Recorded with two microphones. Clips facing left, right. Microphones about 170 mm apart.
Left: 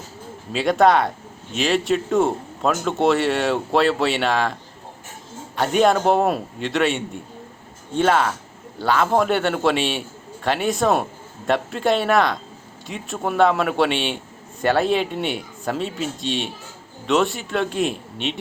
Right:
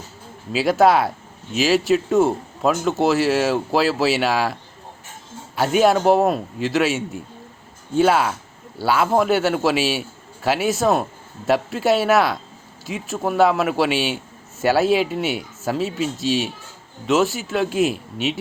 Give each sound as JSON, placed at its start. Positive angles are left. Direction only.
{"t": 0.5, "sound": "speech", "side_deg": -5}
{"t": 5.5, "sound": "speech", "side_deg": -5}